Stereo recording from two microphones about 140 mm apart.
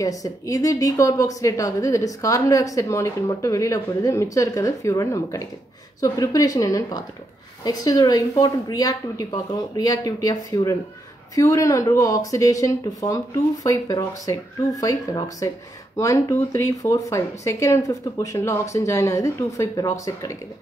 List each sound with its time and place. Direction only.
0.0 s a woman's voice: 25° left (ahead or behind)